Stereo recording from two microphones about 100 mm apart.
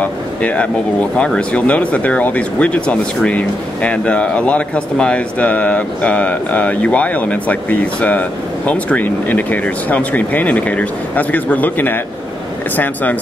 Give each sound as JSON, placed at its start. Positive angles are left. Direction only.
{"t": 0.0, "sound": "speech", "side_deg": 15}